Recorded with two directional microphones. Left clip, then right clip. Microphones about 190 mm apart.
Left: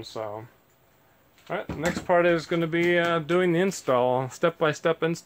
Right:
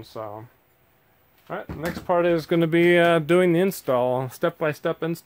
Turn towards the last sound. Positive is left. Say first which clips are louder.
# left 2 dB
turn(degrees=-15)  # may be behind; listen again after turning